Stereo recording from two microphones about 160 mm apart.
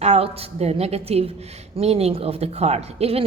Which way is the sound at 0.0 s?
40° right (ahead or behind).